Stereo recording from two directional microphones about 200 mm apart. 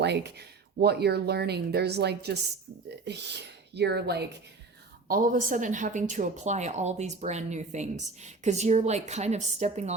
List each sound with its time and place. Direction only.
0.0 s speech: 60° right (ahead or behind)
5.0 s a woman's voice: 45° right (ahead or behind)